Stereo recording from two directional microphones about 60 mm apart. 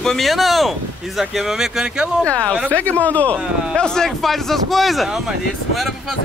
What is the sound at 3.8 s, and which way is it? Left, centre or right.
Speech, centre.